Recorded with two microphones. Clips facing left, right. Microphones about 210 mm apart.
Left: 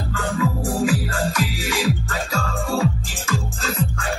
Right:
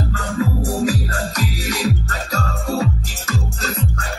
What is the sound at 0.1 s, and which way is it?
Music, 40° right (ahead or behind).